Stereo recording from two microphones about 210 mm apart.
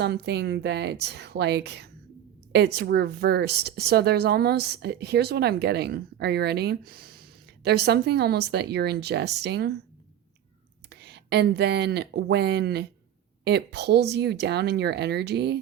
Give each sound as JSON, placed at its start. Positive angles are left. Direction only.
{"t": 0.0, "sound": "a woman's voice", "side_deg": -55}
{"t": 10.8, "sound": "a woman's voice", "side_deg": -55}